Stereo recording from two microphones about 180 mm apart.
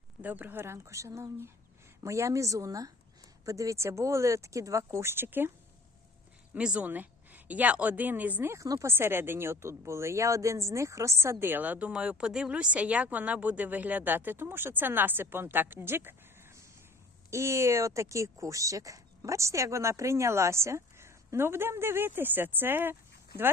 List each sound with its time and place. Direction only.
0.2 s a woman's voice: 10° right (ahead or behind)
6.5 s a woman's voice: 5° right (ahead or behind)